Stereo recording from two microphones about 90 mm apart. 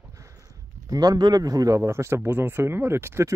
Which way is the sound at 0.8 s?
45° right (ahead or behind).